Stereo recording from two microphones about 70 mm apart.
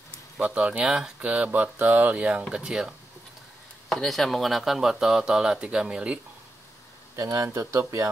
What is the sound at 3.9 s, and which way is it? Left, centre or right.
Speech, centre.